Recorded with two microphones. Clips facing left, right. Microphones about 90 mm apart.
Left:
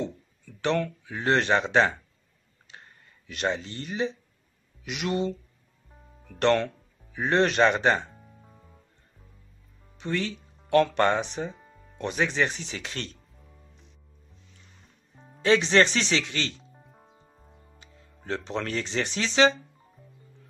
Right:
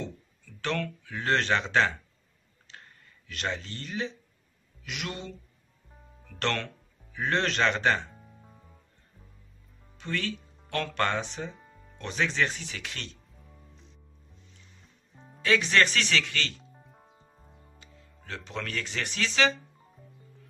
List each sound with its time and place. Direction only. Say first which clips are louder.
0.6 s speech: left 5 dB; 20° left (ahead or behind)
3.3 s speech: left 5 dB; 20° left (ahead or behind)
8.1 s music: even; centre (ahead or behind)
9.9 s speech: left 3 dB; 20° left (ahead or behind)
11.6 s music: left 1 dB; centre (ahead or behind)
12.0 s speech: left 3 dB; 15° left (ahead or behind); by 13.2 s 35° left (ahead or behind)
15.1 s music: even; centre (ahead or behind)
15.4 s speech: left 4 dB; 25° left (ahead or behind)
16.7 s music: left 1 dB; centre (ahead or behind)
18.2 s speech: left 6 dB; 30° left (ahead or behind)